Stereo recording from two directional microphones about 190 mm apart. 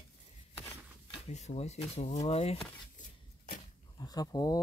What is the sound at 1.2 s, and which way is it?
Speech, 35° left (ahead or behind).